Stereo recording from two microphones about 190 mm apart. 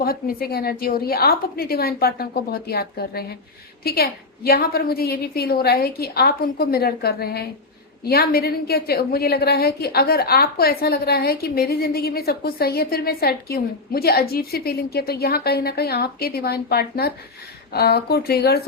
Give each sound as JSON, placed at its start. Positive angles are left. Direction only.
{"t": 0.0, "sound": "a woman's voice", "side_deg": 50}